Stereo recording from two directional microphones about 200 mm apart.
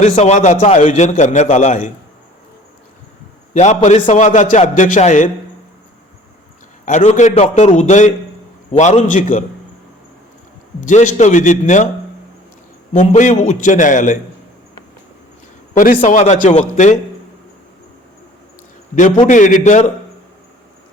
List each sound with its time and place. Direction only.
0.2 s a man's voice: 35° left (ahead or behind)
3.5 s a man's voice: 35° left (ahead or behind)
6.8 s a man's voice: 35° left (ahead or behind)
10.8 s a man's voice: 40° left (ahead or behind)
12.9 s a man's voice: 40° left (ahead or behind)
15.7 s a man's voice: 40° left (ahead or behind)
19.2 s a man's voice: 40° left (ahead or behind)